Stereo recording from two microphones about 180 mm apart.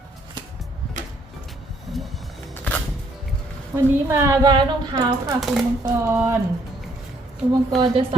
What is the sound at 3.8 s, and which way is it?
A woman's voice, 15° right (ahead or behind).